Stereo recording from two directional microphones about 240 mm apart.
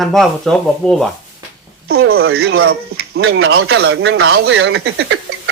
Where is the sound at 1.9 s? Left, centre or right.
Right.